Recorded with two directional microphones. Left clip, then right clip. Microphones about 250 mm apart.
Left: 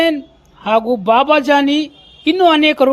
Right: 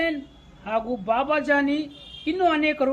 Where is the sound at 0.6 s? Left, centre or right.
Left.